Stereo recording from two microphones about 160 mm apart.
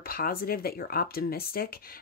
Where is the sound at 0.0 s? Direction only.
65° left (ahead or behind).